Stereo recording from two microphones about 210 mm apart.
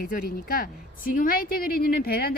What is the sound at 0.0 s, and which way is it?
Speech, 45° left (ahead or behind).